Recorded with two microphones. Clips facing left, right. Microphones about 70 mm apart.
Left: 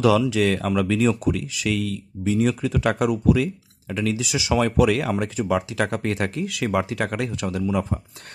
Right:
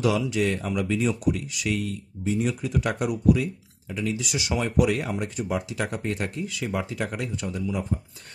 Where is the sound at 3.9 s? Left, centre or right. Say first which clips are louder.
Left 4 dB; left.